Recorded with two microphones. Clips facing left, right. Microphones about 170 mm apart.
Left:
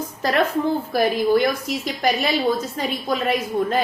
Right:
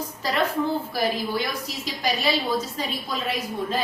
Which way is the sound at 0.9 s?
55° left (ahead or behind).